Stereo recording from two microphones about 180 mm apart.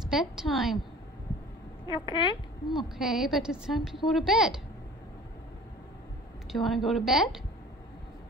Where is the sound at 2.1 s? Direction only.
25° left (ahead or behind).